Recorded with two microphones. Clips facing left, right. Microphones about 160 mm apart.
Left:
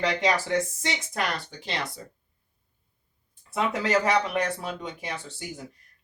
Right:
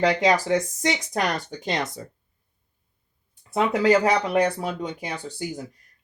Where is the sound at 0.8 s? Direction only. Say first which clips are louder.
Right 6 dB; 40° right (ahead or behind).